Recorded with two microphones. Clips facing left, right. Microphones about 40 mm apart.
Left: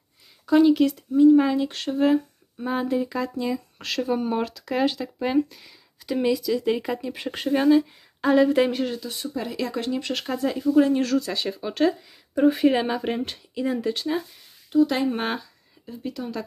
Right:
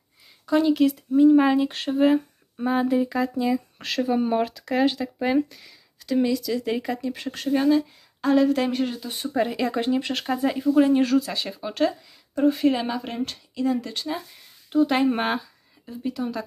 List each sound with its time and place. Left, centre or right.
0.5 s speech: centre
1.1 s speech: centre
8.7 s speech: centre
9.0 s speech: right
9.5 s speech: centre
12.4 s speech: centre
14.7 s speech: right
15.1 s speech: centre